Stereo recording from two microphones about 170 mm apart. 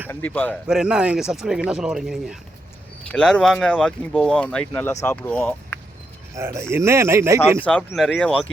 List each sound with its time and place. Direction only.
0.1 s speech: 10° left (ahead or behind)
0.7 s speech: 5° right (ahead or behind)
6.3 s speech: 15° right (ahead or behind)
7.6 s speech: 10° left (ahead or behind)